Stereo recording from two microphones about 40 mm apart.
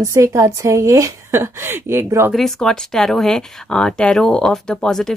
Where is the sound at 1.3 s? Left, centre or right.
Right.